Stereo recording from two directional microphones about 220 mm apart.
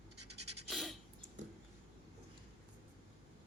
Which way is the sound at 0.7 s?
Centre (ahead or behind).